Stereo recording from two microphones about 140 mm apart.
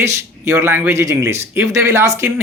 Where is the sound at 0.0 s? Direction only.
20° right (ahead or behind).